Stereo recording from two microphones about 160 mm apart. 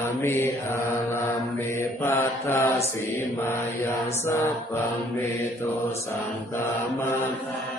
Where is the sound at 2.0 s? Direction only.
15° left (ahead or behind).